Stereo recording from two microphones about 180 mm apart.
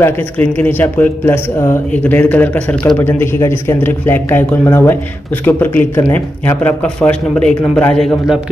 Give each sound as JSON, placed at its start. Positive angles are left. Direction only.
{"t": 0.0, "sound": "a man's voice", "side_deg": 10}